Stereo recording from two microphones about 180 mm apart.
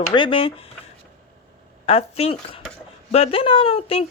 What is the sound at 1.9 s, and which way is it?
Speech, 35° left (ahead or behind).